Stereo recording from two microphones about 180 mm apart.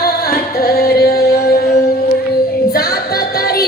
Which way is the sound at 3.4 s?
60° left (ahead or behind).